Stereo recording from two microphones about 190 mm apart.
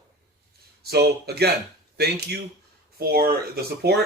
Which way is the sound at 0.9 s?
55° right (ahead or behind).